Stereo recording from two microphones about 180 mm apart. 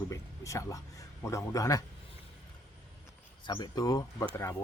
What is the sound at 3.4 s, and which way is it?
Speech, 25° left (ahead or behind).